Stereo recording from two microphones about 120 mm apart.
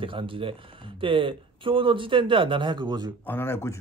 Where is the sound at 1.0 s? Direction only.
45° right (ahead or behind).